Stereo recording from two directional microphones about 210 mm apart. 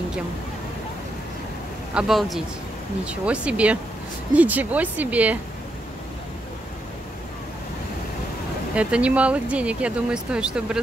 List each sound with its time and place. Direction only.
2.0 s speech: centre (ahead or behind)
8.7 s speech: 5° right (ahead or behind)